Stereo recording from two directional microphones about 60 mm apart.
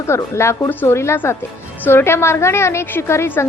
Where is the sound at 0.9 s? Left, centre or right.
Left.